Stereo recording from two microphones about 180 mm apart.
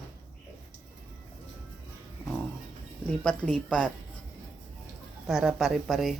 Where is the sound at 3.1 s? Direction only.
5° left (ahead or behind).